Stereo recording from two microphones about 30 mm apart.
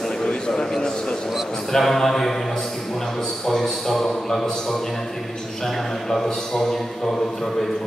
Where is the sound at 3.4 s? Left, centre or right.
Centre.